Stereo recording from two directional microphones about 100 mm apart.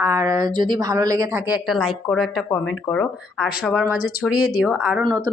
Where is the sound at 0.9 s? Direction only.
35° right (ahead or behind).